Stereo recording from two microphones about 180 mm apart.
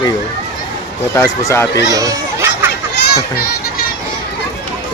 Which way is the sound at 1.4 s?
15° left (ahead or behind).